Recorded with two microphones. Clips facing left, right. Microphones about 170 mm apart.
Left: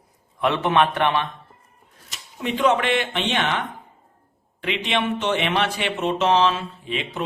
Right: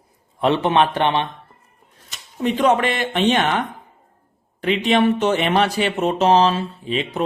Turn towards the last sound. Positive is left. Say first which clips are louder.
# right 5 dB
turn(degrees=-35)  # may be behind; listen again after turning